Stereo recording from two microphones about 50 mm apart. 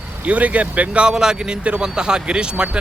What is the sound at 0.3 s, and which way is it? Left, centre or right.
Speech, right.